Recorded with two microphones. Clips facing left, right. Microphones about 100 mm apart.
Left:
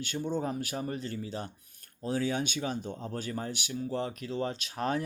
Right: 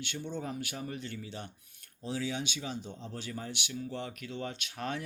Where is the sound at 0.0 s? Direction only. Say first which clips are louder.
Left 6 dB; 40° left (ahead or behind).